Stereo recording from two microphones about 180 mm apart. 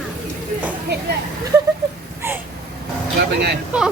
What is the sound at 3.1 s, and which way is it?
Speech, 65° right (ahead or behind).